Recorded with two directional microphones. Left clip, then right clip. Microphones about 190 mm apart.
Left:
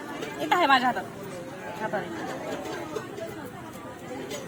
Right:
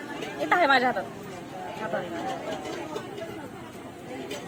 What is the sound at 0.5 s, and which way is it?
Speech, centre (ahead or behind).